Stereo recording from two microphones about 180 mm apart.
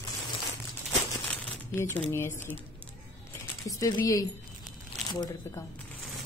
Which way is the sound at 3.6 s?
20° left (ahead or behind).